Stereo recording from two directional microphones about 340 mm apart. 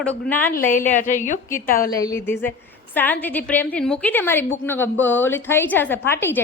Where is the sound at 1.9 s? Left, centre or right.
Centre.